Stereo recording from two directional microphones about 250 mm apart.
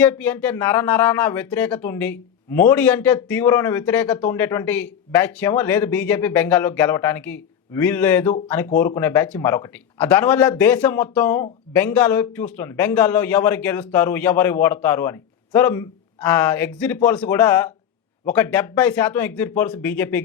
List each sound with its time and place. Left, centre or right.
0.0 s speech: centre